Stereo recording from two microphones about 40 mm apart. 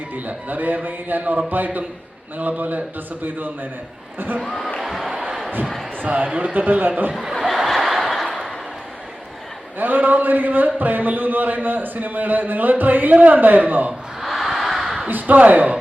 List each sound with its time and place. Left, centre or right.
0.3 s a man's voice: right
4.4 s speech: centre
4.9 s a sound: centre
6.1 s a man's voice: right
7.1 s speech: centre
7.4 s snicker: centre
9.7 s a man's voice: right
14.3 s a sound: centre
15.0 s speech: right